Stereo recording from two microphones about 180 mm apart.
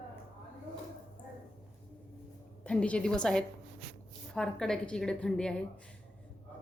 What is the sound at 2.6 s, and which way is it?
A woman's voice, 5° left (ahead or behind).